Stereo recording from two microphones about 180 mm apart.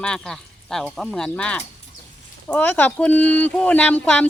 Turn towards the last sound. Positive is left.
turn(degrees=5)  # may be behind; listen again after turning